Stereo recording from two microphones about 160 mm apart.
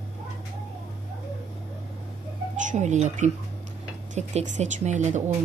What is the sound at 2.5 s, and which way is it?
Speech, 50° right (ahead or behind).